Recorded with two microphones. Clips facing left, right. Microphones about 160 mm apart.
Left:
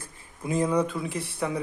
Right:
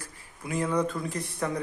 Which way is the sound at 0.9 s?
5° left (ahead or behind).